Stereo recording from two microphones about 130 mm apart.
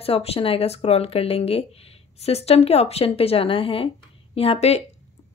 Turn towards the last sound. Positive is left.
turn(degrees=50)  # may be behind; listen again after turning